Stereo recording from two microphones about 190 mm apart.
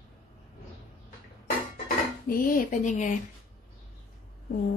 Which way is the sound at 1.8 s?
50° left (ahead or behind).